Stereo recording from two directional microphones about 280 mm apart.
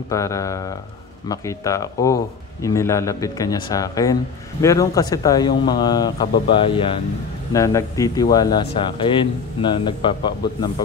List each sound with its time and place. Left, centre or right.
0.1 s a man's voice: centre